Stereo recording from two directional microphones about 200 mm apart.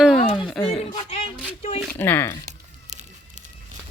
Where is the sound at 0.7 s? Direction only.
30° left (ahead or behind).